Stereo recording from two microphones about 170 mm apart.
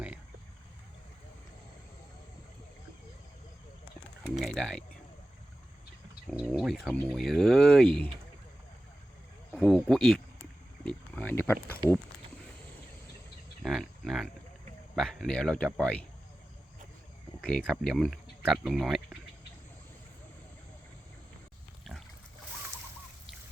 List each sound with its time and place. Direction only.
4.4 s speech: 5° left (ahead or behind)
6.2 s speech: centre (ahead or behind)
9.6 s speech: 5° left (ahead or behind)
13.6 s speech: centre (ahead or behind)
17.4 s speech: centre (ahead or behind)